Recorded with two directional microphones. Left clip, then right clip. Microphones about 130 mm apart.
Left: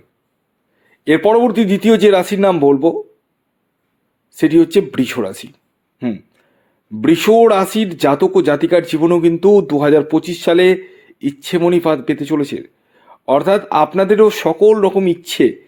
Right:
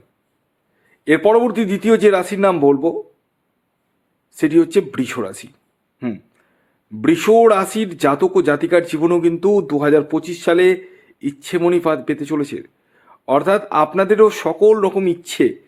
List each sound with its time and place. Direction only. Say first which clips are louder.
0.9 s speech: left 1 dB; 30° left (ahead or behind)
4.3 s speech: left 3 dB; 30° left (ahead or behind)
6.0 s a sound: left 4 dB; 25° left (ahead or behind)
7.0 s speech: left 2 dB; 25° left (ahead or behind)